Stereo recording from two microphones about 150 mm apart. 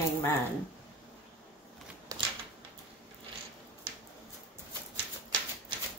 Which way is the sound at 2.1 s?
25° right (ahead or behind).